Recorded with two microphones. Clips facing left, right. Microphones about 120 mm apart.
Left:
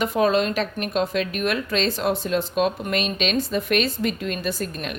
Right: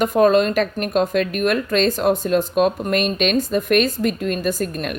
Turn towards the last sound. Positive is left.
turn(degrees=-50)  # may be behind; listen again after turning